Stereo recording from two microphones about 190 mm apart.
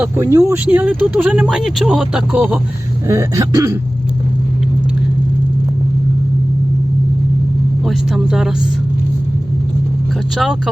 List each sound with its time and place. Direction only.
0.0 s speech: 15° right (ahead or behind)
3.1 s speech: 15° right (ahead or behind)
7.9 s speech: centre (ahead or behind)
10.3 s speech: centre (ahead or behind)